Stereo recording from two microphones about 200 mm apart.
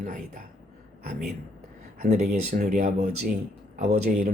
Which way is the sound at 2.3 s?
40° right (ahead or behind).